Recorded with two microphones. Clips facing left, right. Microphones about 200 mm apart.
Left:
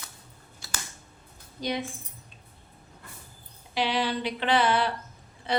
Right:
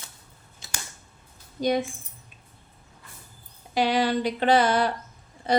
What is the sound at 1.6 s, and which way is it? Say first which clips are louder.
Speech: right 7 dB; 45° right (ahead or behind).